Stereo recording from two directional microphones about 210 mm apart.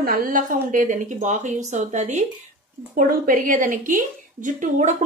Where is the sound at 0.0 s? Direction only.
45° right (ahead or behind).